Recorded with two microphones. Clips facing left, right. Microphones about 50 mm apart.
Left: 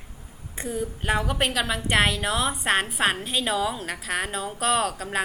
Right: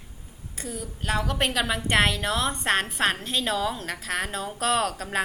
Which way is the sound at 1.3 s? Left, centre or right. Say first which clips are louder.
Even; centre.